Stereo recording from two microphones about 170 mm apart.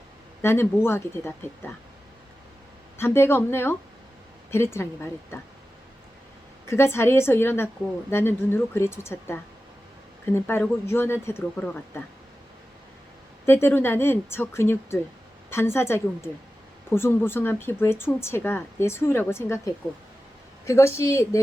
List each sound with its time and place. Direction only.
0.4 s speech: 15° left (ahead or behind)
3.0 s speech: 15° left (ahead or behind)
6.7 s speech: 15° left (ahead or behind)
13.4 s speech: 15° left (ahead or behind)